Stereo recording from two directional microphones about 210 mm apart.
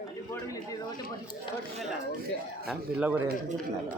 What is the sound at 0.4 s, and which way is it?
Speech, 15° left (ahead or behind).